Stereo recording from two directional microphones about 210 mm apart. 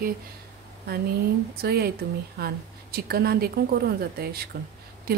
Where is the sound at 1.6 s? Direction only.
50° right (ahead or behind).